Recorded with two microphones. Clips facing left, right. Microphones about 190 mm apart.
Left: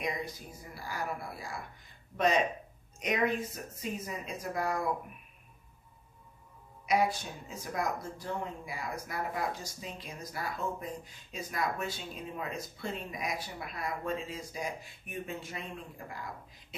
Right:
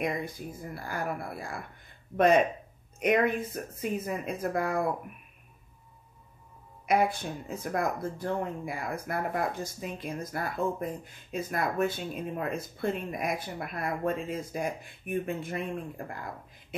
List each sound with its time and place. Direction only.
0.0 s speech: 55° right (ahead or behind)
6.9 s speech: 55° right (ahead or behind)